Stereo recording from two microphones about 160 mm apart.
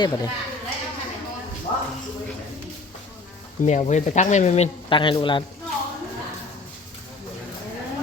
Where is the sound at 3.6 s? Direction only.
50° left (ahead or behind); by 5.5 s 30° left (ahead or behind).